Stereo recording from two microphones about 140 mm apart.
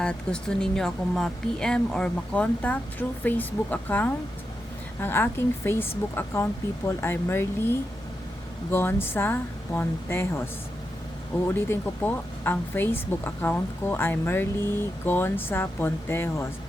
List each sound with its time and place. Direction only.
0.0 s speech: 5° left (ahead or behind)